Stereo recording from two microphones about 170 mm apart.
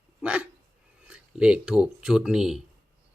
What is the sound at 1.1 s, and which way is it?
Speech, 5° right (ahead or behind).